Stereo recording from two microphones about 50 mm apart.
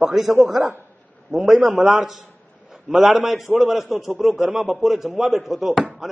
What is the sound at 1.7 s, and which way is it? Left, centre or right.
Speech, right.